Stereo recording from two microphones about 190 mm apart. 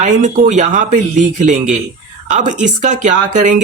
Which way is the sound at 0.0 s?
40° right (ahead or behind).